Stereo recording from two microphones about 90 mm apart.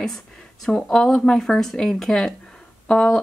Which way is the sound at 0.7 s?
5° left (ahead or behind).